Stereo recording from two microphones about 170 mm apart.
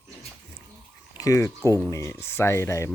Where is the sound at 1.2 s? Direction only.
20° left (ahead or behind).